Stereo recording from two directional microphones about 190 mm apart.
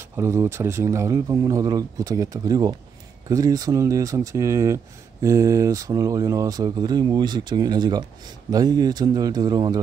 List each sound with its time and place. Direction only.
0.1 s speech: 15° right (ahead or behind)